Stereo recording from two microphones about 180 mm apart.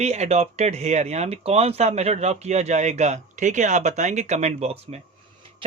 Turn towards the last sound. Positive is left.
turn(degrees=-35)  # may be behind; listen again after turning